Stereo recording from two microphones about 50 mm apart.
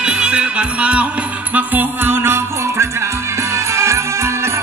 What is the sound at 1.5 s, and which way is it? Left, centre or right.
Music, right.